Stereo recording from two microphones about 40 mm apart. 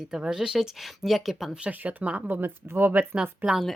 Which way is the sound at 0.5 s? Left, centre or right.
Centre.